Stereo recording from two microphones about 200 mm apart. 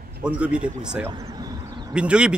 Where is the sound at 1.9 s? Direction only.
5° right (ahead or behind).